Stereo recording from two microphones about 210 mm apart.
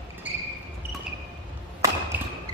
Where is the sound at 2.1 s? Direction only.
5° right (ahead or behind).